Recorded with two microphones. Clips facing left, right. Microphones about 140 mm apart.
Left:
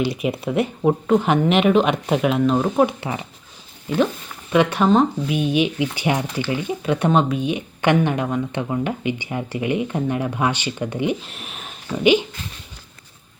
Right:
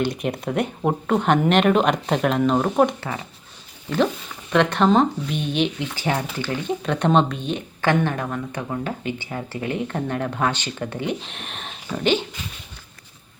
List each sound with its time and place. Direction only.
0.0 s speech: 5° left (ahead or behind)
3.0 s a woman's voice: 15° left (ahead or behind)